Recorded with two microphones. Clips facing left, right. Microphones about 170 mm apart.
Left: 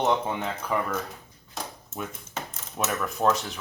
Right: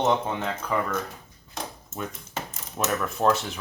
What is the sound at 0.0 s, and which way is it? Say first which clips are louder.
Speech: right 1 dB; 5° left (ahead or behind).